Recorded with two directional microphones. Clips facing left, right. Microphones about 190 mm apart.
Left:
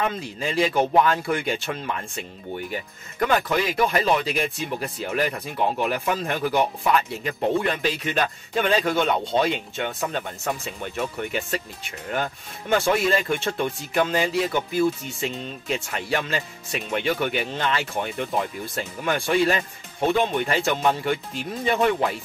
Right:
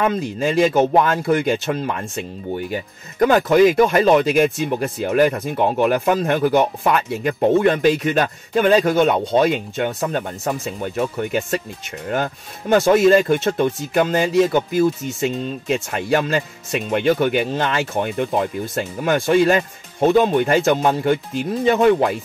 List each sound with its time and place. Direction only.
0.0 s speech: 45° right (ahead or behind)